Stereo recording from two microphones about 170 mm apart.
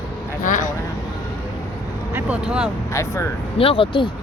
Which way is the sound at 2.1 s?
5° right (ahead or behind).